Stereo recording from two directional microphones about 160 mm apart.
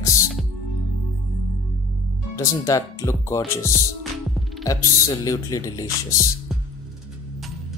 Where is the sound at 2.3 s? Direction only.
20° left (ahead or behind).